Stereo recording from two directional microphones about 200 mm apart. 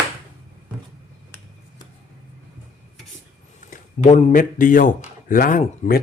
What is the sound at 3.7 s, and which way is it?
Speech, 35° left (ahead or behind).